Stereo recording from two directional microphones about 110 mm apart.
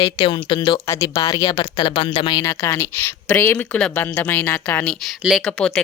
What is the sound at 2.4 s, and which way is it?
Speech, 25° left (ahead or behind).